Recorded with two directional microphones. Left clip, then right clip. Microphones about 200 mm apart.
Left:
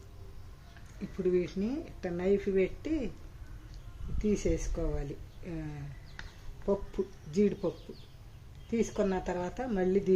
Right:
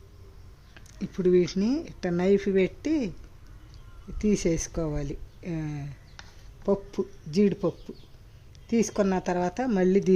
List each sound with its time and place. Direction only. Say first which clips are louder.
1.2 s speech: right 7 dB; 60° right (ahead or behind)
4.2 s speech: right 5 dB; 55° right (ahead or behind)
8.7 s speech: right 5 dB; 55° right (ahead or behind)